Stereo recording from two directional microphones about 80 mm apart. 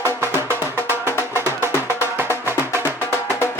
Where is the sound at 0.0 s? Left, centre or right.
Right.